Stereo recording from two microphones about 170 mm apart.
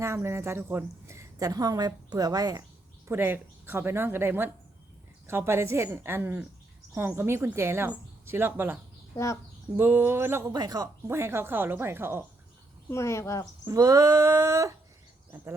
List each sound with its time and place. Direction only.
0.0 s a woman's voice: 15° right (ahead or behind)
3.1 s speech: 10° right (ahead or behind)
9.1 s speech: 15° left (ahead or behind)
9.7 s speech: 15° right (ahead or behind)
12.9 s speech: 15° left (ahead or behind)
13.7 s a woman's voice: 20° right (ahead or behind)